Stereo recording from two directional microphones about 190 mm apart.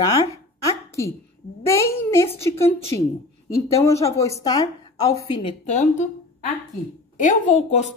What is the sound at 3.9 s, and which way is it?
A woman's voice, 15° left (ahead or behind).